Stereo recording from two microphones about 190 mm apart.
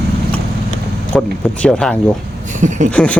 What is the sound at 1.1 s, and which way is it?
Speech, 5° left (ahead or behind).